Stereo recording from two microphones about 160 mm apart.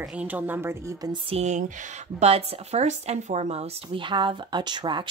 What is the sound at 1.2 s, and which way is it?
Speech, 45° right (ahead or behind).